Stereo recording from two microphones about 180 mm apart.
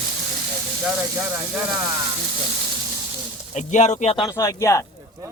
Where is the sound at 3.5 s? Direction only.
40° left (ahead or behind).